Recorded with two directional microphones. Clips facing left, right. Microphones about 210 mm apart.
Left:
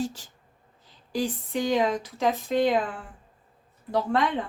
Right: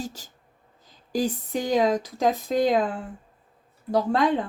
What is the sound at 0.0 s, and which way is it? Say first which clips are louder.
A woman's voice: left 4 dB; 40° right (ahead or behind).